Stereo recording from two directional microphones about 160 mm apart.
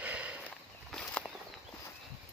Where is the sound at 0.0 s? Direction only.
10° right (ahead or behind).